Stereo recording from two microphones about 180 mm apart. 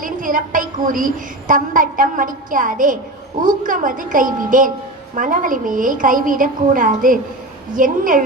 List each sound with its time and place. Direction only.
0.0 s a woman's voice: 45° right (ahead or behind)